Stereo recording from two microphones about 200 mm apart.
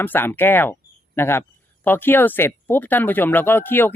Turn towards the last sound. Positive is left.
turn(degrees=10)  # may be behind; listen again after turning